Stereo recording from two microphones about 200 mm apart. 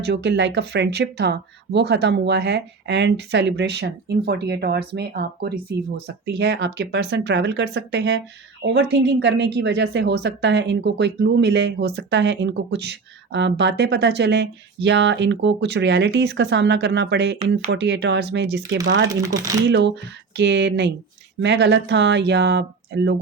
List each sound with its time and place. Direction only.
0.0 s a woman's voice: 55° right (ahead or behind)
19.0 s speech: 15° right (ahead or behind)
20.3 s a woman's voice: 60° right (ahead or behind)